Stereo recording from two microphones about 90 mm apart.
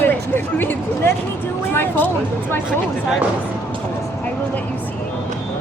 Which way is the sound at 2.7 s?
10° right (ahead or behind).